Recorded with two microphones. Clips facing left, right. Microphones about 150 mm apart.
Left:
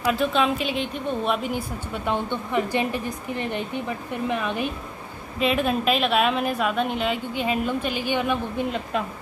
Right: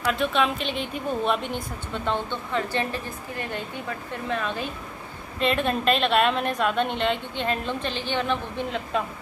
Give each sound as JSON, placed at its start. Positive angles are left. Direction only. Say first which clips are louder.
{"t": 0.0, "sound": "a woman's voice", "louder": "left 2 dB", "side_deg": 0}
{"t": 2.0, "sound": "a woman's voice", "louder": "left 2 dB", "side_deg": 15}
{"t": 5.4, "sound": "a woman's voice", "louder": "left 1 dB", "side_deg": 5}